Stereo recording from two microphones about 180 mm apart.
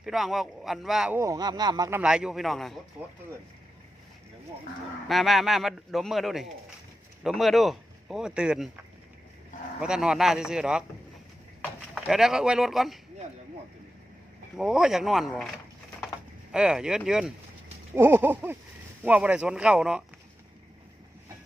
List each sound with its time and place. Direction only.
0.0 s a man's voice: centre (ahead or behind)
1.1 s speech: 15° right (ahead or behind)
2.0 s a man's voice: 5° right (ahead or behind)
5.0 s a man's voice: centre (ahead or behind)
9.8 s a man's voice: 5° right (ahead or behind)
11.9 s a man's voice: centre (ahead or behind)
14.5 s a man's voice: 5° right (ahead or behind)
16.5 s a man's voice: 5° right (ahead or behind)